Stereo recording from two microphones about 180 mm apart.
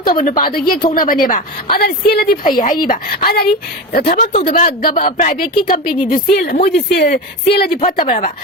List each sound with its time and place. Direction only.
0.0 s a woman's voice: 50° left (ahead or behind)
4.2 s speech: 30° left (ahead or behind)
4.5 s a woman's voice: 50° left (ahead or behind)
7.7 s speech: 35° left (ahead or behind)